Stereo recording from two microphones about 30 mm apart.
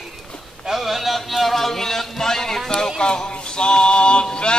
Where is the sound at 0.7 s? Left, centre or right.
Centre.